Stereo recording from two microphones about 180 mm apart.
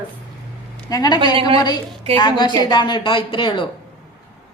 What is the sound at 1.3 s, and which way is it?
Speech, 30° right (ahead or behind).